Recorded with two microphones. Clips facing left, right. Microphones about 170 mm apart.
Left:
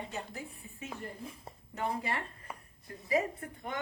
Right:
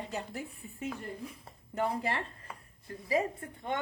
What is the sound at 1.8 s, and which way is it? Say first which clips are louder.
A woman's voice: right 3 dB; 30° right (ahead or behind).